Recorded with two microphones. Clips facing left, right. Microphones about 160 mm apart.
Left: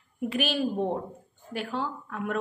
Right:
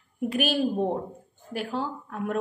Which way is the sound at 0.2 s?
45° right (ahead or behind).